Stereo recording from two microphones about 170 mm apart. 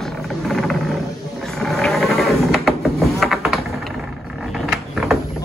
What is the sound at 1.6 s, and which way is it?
Sheep, 5° left (ahead or behind).